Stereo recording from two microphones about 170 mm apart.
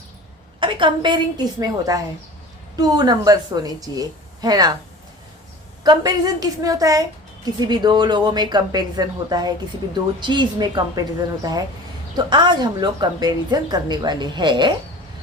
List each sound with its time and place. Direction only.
0.6 s a woman's voice: 30° right (ahead or behind)
5.8 s a woman's voice: 25° right (ahead or behind)
12.1 s a woman's voice: 25° right (ahead or behind)